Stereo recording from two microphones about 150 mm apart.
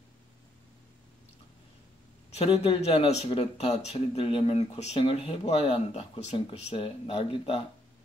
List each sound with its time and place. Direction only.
2.3 s speech: 40° left (ahead or behind)